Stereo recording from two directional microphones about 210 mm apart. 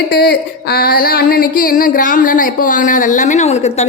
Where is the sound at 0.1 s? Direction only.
45° left (ahead or behind).